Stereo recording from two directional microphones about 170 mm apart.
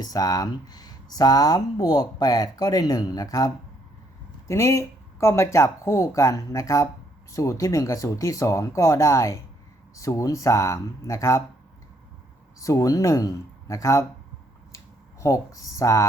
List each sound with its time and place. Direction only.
0.0 s speech: 20° left (ahead or behind)
12.5 s speech: 20° left (ahead or behind)
15.2 s speech: 20° left (ahead or behind)